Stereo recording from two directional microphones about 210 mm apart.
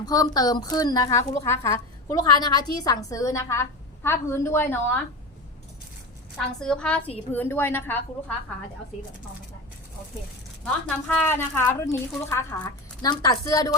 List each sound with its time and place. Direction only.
0.0 s a woman's voice: 20° left (ahead or behind)
6.3 s a woman's voice: 5° left (ahead or behind)
10.8 s a woman's voice: 10° left (ahead or behind)